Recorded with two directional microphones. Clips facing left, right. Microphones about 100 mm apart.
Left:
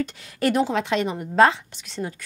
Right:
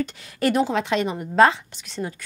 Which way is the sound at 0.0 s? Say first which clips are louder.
Even; 15° right (ahead or behind).